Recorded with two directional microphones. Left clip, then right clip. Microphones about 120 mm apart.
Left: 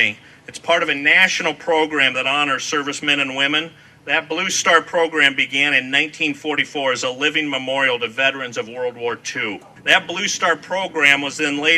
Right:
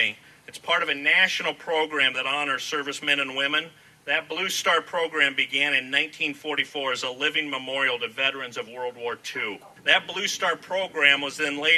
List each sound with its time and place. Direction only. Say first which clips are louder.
0.7 s a man's voice: left 7 dB; 30° left (ahead or behind)